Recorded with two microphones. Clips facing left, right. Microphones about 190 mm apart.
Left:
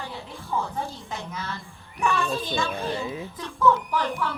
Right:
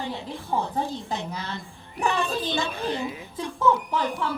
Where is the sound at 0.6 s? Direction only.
20° right (ahead or behind).